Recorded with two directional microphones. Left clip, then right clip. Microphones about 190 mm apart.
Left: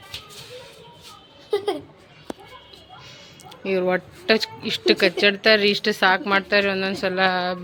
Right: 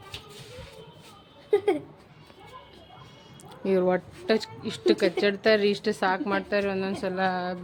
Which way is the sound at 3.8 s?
5° right (ahead or behind).